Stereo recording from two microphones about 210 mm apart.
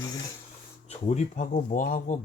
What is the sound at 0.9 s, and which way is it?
Speech, 30° left (ahead or behind).